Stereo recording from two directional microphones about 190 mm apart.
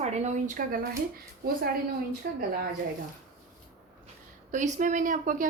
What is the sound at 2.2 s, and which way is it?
Speech, 55° right (ahead or behind).